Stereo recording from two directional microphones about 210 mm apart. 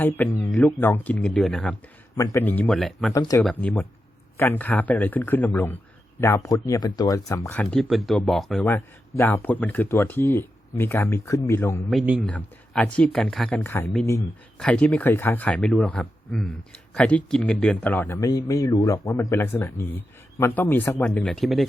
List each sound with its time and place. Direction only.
0.0 s speech: 10° left (ahead or behind)
2.1 s speech: 15° left (ahead or behind)
3.1 s speech: 15° left (ahead or behind)
3.4 s speech: 5° left (ahead or behind)
11.9 s speech: 5° right (ahead or behind)